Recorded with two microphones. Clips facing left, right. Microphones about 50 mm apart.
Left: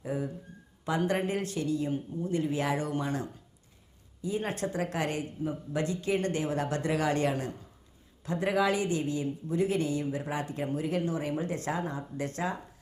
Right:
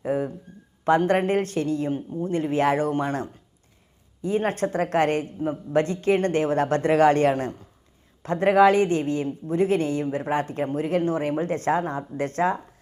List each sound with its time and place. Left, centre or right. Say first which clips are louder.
0.0 s speech: right 8 dB; right